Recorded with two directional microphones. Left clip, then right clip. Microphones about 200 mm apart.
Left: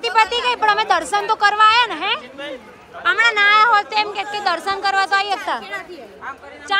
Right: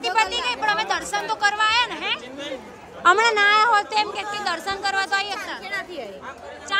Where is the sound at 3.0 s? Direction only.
30° right (ahead or behind).